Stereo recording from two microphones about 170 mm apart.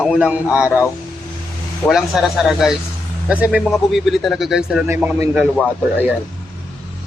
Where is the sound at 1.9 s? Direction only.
Centre (ahead or behind).